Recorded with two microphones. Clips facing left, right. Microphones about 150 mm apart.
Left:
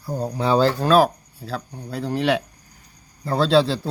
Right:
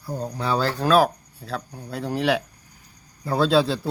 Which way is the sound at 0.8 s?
Centre (ahead or behind).